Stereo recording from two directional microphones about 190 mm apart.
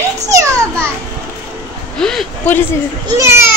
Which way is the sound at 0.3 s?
15° right (ahead or behind).